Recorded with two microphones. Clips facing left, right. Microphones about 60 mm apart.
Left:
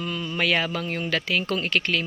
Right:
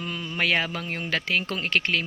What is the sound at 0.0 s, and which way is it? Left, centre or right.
Mantra, right.